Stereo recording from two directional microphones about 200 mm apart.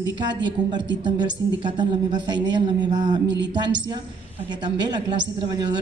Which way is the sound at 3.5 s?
20° right (ahead or behind).